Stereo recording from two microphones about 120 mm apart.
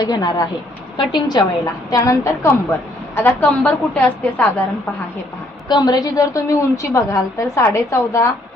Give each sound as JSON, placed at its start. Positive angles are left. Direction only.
{"t": 0.0, "sound": "a woman's voice", "side_deg": 35}
{"t": 5.6, "sound": "a woman's voice", "side_deg": 35}